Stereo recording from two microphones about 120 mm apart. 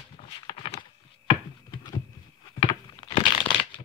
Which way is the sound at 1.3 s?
40° left (ahead or behind).